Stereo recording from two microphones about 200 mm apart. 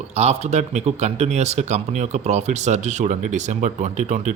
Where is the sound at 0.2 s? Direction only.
35° right (ahead or behind).